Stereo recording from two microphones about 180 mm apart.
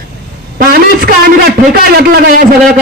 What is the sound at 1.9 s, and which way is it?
Speech, 55° right (ahead or behind).